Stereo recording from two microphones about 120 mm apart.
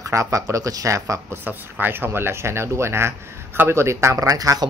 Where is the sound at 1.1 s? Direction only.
15° right (ahead or behind).